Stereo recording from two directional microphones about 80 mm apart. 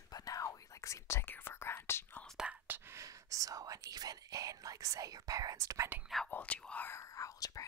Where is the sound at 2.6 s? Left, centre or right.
Right.